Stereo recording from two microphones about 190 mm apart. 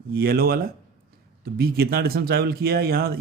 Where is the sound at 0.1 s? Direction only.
55° right (ahead or behind).